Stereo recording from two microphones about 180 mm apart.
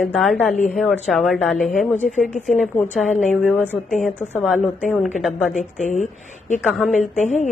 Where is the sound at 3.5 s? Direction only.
10° left (ahead or behind).